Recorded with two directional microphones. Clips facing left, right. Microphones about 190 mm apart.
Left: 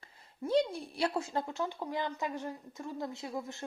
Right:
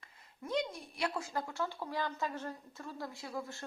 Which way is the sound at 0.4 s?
30° left (ahead or behind).